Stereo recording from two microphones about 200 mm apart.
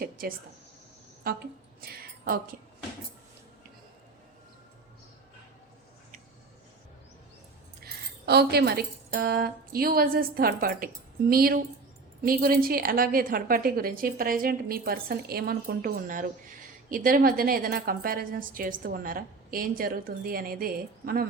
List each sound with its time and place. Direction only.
0.0 s a sound: 45° right (ahead or behind)
1.2 s a woman's voice: 50° right (ahead or behind)
7.8 s a woman's voice: 50° right (ahead or behind)